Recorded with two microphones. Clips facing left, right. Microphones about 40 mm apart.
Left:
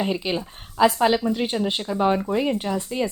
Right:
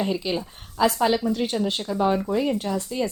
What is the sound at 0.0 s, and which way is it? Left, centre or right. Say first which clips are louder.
A woman's voice: left 1 dB; left.